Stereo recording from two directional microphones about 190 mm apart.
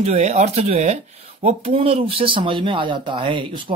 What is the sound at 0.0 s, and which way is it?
Speech, 35° right (ahead or behind).